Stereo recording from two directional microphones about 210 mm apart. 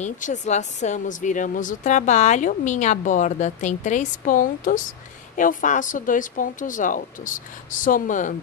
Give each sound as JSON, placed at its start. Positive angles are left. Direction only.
{"t": 0.0, "sound": "speech", "side_deg": 35}